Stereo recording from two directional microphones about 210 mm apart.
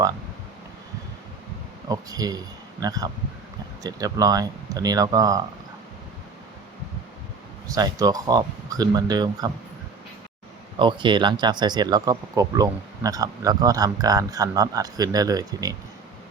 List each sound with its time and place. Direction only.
1.9 s speech: 15° right (ahead or behind)
7.7 s speech: 15° right (ahead or behind)
10.8 s speech: 25° right (ahead or behind)